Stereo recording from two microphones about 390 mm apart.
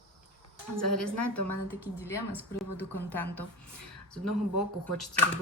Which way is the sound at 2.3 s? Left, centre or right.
Centre.